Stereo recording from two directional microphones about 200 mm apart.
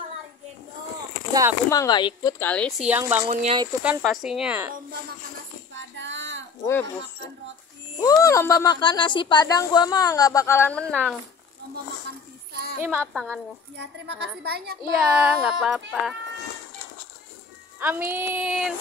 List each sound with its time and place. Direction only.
1.7 s speech: 20° left (ahead or behind)
2.8 s a sound: 10° right (ahead or behind)
3.3 s speech: 30° right (ahead or behind)
3.8 s speech: 5° right (ahead or behind)
5.9 s child singing: 65° right (ahead or behind)
6.6 s speech: 10° left (ahead or behind)
8.0 s speech: 15° left (ahead or behind)
13.0 s speech: 5° left (ahead or behind)
13.7 s a woman's voice: 60° right (ahead or behind)
15.0 s speech: 5° right (ahead or behind)
17.7 s a sound: 10° right (ahead or behind)